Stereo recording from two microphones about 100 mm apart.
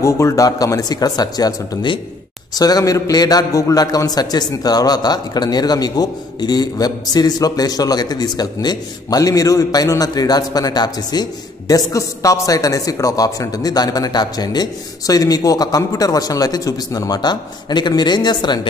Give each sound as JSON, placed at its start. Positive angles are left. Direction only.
{"t": 0.0, "sound": "a man's voice", "side_deg": 30}